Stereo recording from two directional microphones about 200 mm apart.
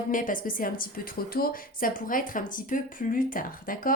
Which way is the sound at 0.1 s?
40° left (ahead or behind).